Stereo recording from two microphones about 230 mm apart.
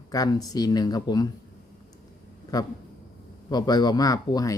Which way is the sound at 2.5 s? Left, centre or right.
Centre.